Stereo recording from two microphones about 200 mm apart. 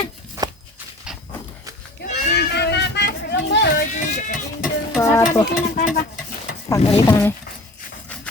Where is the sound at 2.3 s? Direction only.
55° left (ahead or behind).